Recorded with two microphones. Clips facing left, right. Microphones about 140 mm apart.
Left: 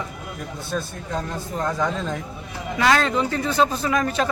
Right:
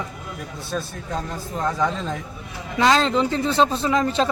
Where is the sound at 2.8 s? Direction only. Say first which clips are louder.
Right 2 dB; 20° right (ahead or behind).